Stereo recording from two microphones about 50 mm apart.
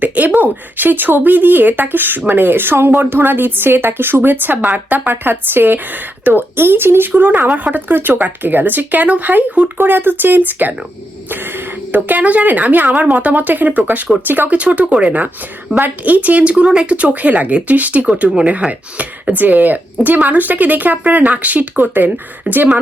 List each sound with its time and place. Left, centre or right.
0.0 s speech: right
7.2 s speech: right
9.7 s speech: right
14.6 s speech: right